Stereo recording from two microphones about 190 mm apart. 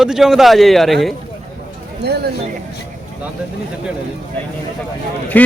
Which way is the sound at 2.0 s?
60° right (ahead or behind).